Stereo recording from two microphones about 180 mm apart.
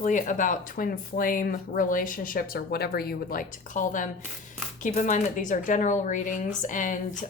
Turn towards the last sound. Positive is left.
turn(degrees=45)  # may be behind; listen again after turning